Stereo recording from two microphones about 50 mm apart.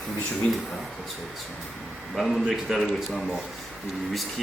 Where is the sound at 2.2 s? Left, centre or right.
Centre.